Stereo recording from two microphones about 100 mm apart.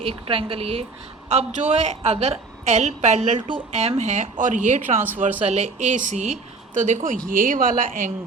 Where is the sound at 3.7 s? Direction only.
90° right.